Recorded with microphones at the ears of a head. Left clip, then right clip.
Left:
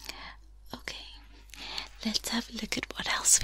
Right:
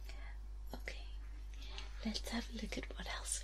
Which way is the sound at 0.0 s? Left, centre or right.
Left.